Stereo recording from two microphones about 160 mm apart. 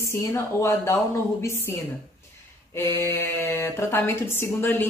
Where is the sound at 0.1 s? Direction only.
15° left (ahead or behind).